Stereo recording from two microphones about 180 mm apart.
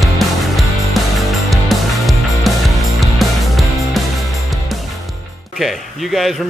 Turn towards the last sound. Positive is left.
turn(degrees=0)  # may be behind; listen again after turning